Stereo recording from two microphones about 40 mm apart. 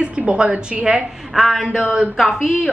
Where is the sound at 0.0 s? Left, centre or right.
Right.